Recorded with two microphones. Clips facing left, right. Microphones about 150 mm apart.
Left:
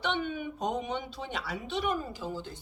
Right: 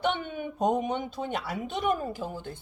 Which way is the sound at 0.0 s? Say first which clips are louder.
Right 2 dB; 50° right (ahead or behind).